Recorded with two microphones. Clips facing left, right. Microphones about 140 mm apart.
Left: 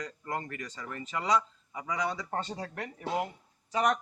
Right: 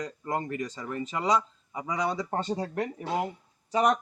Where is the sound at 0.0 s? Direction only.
25° right (ahead or behind).